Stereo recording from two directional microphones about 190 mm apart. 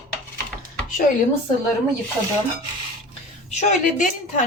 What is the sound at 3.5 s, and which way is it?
Speech, 40° left (ahead or behind).